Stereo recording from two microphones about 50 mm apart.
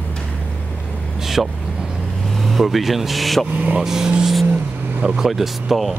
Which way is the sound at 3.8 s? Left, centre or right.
Centre.